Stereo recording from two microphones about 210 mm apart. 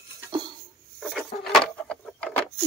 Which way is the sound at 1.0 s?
Centre (ahead or behind).